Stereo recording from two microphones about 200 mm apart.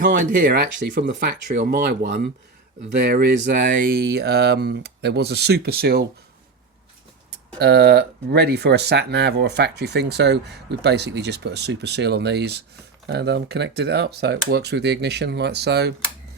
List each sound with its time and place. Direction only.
0.0 s speech: 45° right (ahead or behind)
1.0 s speech: 55° right (ahead or behind)
7.6 s speech: 55° right (ahead or behind)